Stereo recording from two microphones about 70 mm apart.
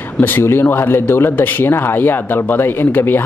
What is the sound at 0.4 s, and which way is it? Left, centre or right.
Speech, left.